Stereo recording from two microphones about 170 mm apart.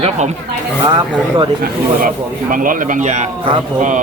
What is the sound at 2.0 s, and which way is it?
A man's voice, 55° right (ahead or behind).